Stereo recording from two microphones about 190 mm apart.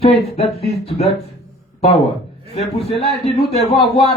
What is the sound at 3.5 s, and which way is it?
Speech, 30° left (ahead or behind).